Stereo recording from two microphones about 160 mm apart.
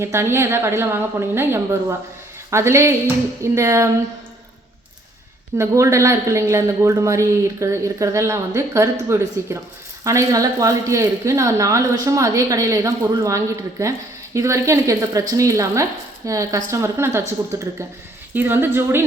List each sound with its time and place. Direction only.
0.0 s a woman's voice: 15° right (ahead or behind)
5.5 s a woman's voice: 20° right (ahead or behind)